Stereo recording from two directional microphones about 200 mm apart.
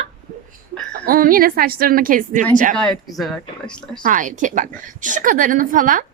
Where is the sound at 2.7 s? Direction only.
5° left (ahead or behind).